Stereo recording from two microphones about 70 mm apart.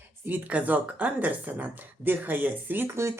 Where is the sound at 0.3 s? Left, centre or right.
Right.